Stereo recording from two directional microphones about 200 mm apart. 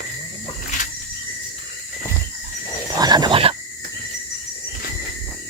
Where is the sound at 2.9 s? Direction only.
20° right (ahead or behind).